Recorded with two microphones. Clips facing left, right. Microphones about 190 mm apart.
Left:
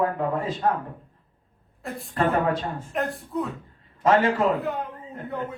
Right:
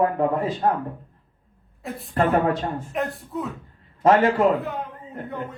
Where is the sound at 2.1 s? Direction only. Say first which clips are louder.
Right 3 dB; 35° right (ahead or behind).